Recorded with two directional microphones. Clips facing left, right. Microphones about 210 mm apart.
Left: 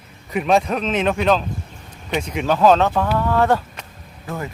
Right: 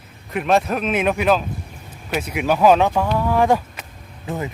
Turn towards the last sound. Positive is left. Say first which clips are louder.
# right 2 dB
turn(degrees=-20)  # may be behind; listen again after turning